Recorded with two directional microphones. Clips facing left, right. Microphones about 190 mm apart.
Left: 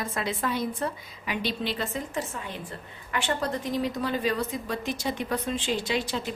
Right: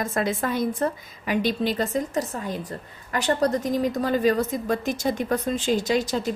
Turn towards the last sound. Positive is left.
turn(degrees=-40)  # may be behind; listen again after turning